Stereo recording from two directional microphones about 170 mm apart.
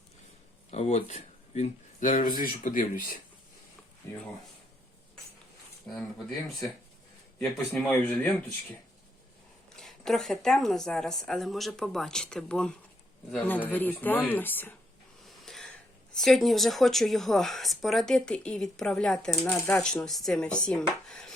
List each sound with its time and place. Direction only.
0.7 s speech: 40° left (ahead or behind)
7.3 s speech: 5° left (ahead or behind)
9.7 s speech: centre (ahead or behind)
15.2 s a sound: centre (ahead or behind)
16.1 s speech: centre (ahead or behind)
19.5 s speech: 20° left (ahead or behind)
19.8 s speech: 5° left (ahead or behind)
21.1 s a sound: 5° left (ahead or behind)